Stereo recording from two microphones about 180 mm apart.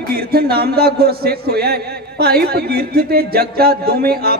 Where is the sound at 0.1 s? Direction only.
60° right (ahead or behind).